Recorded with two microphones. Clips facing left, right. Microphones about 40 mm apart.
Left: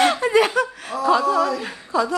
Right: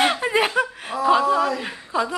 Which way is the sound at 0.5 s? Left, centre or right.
Right.